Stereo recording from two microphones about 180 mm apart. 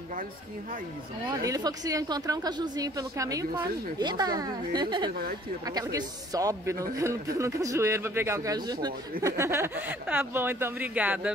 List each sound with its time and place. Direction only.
1.4 s a woman's voice: 20° right (ahead or behind)